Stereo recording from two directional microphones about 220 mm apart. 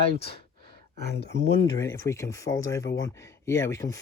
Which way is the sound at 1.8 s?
15° left (ahead or behind).